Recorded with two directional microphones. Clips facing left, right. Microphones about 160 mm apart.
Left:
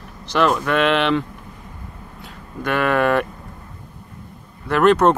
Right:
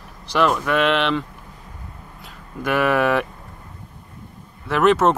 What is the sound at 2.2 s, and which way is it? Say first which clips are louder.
Speech: even; 5° right (ahead or behind).